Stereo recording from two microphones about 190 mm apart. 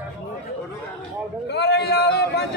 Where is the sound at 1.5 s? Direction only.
60° left (ahead or behind).